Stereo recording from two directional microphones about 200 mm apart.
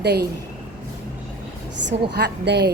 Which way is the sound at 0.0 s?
55° right (ahead or behind).